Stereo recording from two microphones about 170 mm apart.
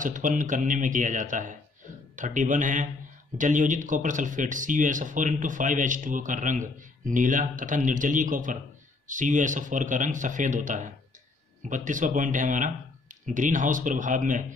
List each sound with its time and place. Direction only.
0.0 s speech: 50° right (ahead or behind)